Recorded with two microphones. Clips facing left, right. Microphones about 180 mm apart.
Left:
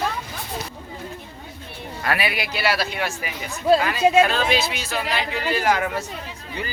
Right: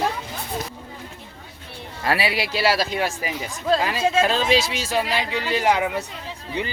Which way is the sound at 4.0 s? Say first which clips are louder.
Left 4 dB; 10° left (ahead or behind).